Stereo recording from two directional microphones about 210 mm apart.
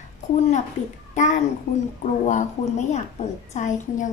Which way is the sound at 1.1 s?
35° left (ahead or behind).